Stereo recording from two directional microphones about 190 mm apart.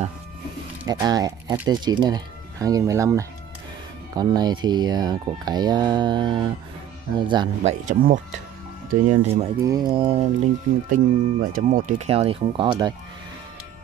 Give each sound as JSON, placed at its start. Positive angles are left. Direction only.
{"t": 0.8, "sound": "speech", "side_deg": -20}
{"t": 7.8, "sound": "speech", "side_deg": -45}
{"t": 9.6, "sound": "speech", "side_deg": -20}